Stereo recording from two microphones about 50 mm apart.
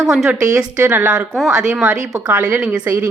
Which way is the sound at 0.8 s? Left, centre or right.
Right.